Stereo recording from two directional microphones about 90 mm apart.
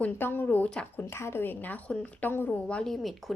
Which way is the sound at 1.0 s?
30° left (ahead or behind).